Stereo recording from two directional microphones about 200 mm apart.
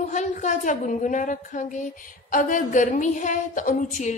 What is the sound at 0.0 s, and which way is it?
A woman's voice, 35° left (ahead or behind).